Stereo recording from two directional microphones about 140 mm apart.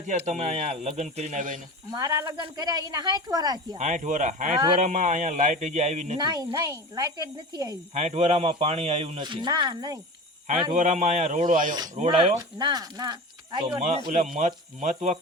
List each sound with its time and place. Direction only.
0.1 s speech: 55° right (ahead or behind)
1.9 s speech: 30° right (ahead or behind)
3.8 s a man's voice: 60° right (ahead or behind)
4.5 s speech: 35° right (ahead or behind)
4.8 s a man's voice: 60° right (ahead or behind)
6.1 s speech: 30° right (ahead or behind)
7.9 s speech: 55° right (ahead or behind)
9.2 s speech: 35° right (ahead or behind)
10.8 s a man's voice: 60° right (ahead or behind)
12.0 s speech: 40° right (ahead or behind)
14.3 s a man's voice: 55° right (ahead or behind)